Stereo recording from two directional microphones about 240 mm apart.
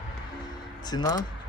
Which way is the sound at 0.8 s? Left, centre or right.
Centre.